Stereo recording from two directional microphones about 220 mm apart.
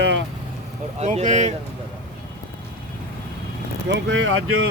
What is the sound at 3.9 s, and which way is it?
Speech, 60° right (ahead or behind).